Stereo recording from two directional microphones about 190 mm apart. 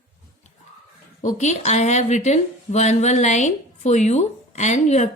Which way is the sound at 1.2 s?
40° left (ahead or behind).